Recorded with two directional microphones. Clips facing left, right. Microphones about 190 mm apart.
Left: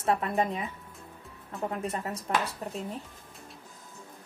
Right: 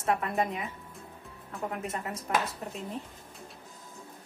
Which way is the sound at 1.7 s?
30° left (ahead or behind).